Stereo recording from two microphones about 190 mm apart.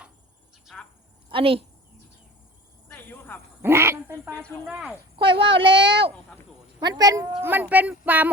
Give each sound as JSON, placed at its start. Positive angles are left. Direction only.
{"t": 0.5, "sound": "cricket", "side_deg": 0}
{"t": 1.3, "sound": "speech", "side_deg": -30}
{"t": 2.9, "sound": "cricket", "side_deg": 10}
{"t": 3.6, "sound": "quack", "side_deg": -15}
{"t": 4.3, "sound": "speech", "side_deg": 10}
{"t": 4.6, "sound": "speech", "side_deg": -5}
{"t": 5.1, "sound": "a child's voice", "side_deg": -25}